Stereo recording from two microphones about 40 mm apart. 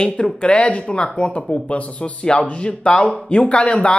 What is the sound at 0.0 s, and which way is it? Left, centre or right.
Speech, left.